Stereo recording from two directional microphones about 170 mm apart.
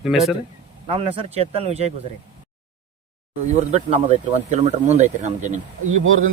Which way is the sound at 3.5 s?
40° right (ahead or behind).